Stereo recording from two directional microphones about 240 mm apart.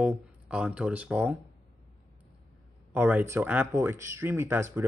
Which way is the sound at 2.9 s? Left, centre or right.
Centre.